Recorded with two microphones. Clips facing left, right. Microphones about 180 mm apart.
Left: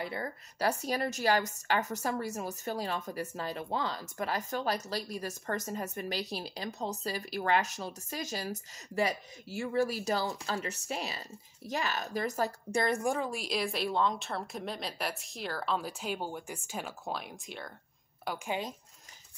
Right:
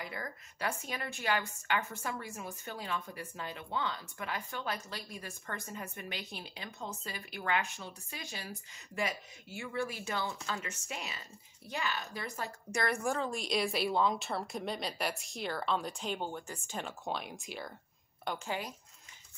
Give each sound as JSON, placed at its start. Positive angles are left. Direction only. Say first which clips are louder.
{"t": 0.0, "sound": "a woman's voice", "louder": "left 5 dB", "side_deg": 30}
{"t": 12.8, "sound": "a woman's voice", "louder": "left 1 dB", "side_deg": 20}
{"t": 18.5, "sound": "speech", "louder": "left 5 dB", "side_deg": 20}